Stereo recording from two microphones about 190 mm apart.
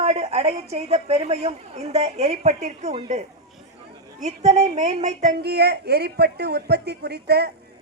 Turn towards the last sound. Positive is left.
turn(degrees=-60)  # may be behind; listen again after turning